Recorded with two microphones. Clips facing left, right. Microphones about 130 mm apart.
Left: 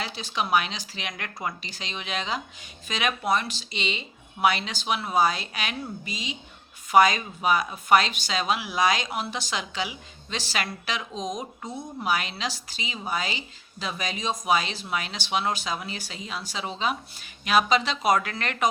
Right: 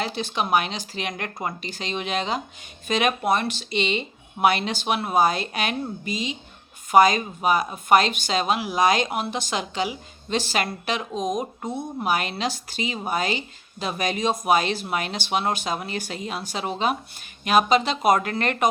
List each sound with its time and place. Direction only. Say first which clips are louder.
0.0 s speech: right 4 dB; 50° right (ahead or behind)
11.7 s speech: right 5 dB; 25° right (ahead or behind)
12.0 s speech: right 3 dB; 50° right (ahead or behind)